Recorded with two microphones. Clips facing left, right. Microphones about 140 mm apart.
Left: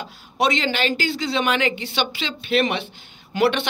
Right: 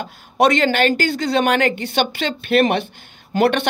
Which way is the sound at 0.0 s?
50° right (ahead or behind).